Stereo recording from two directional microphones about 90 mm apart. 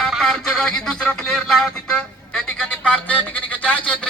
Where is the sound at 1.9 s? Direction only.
10° left (ahead or behind).